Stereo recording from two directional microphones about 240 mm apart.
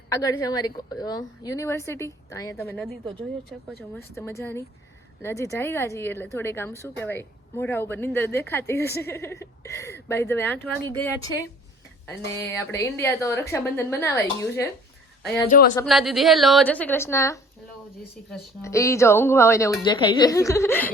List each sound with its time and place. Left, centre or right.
0.1 s a woman's voice: centre
2.7 s a woman's voice: centre
15.4 s speech: left
15.9 s a woman's voice: centre
18.6 s a woman's voice: centre